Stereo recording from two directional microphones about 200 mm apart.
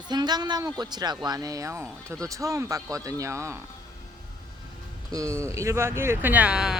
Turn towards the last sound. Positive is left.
turn(degrees=-5)  # may be behind; listen again after turning